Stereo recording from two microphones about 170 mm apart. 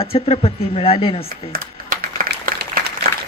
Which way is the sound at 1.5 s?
55° right (ahead or behind).